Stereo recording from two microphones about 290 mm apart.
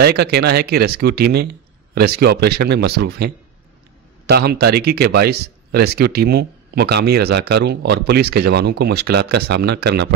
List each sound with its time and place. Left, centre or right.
0.0 s speech: right